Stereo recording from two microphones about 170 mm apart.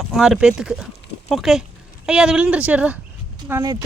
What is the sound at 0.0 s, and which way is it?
Speech, centre (ahead or behind).